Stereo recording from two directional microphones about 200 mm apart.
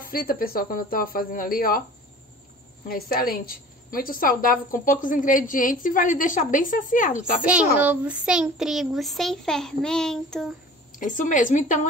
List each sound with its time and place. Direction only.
0.0 s a woman's voice: 45° left (ahead or behind)
2.9 s a woman's voice: 45° left (ahead or behind)
7.4 s a child's voice: 5° right (ahead or behind)
10.9 s a woman's voice: 40° left (ahead or behind)